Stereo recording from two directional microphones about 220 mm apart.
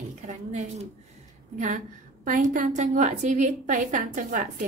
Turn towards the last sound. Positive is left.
turn(degrees=-35)  # may be behind; listen again after turning